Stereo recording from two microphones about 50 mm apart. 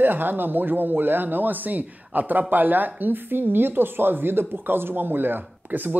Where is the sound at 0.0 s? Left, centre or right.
Right.